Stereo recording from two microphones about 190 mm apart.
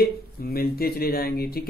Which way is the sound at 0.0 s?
55° left (ahead or behind).